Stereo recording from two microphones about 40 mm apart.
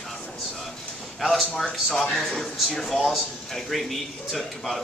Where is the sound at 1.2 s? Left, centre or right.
Centre.